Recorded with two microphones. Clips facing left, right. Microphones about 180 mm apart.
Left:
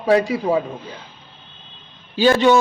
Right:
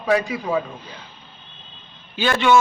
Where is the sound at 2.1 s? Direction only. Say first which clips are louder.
Left 4 dB; 35° left (ahead or behind).